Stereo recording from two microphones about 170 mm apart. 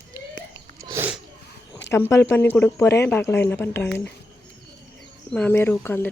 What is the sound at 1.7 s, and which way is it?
Speech, 20° left (ahead or behind).